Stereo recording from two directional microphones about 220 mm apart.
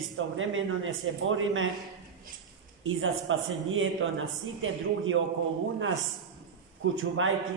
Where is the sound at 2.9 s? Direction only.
65° right (ahead or behind).